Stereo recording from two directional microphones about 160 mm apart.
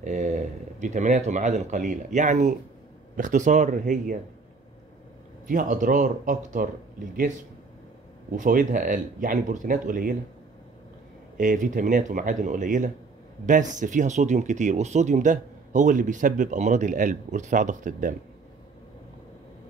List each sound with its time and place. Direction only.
0.0 s speech: 50° right (ahead or behind)
5.5 s speech: 55° right (ahead or behind)
8.3 s speech: 55° right (ahead or behind)
11.3 s speech: 55° right (ahead or behind)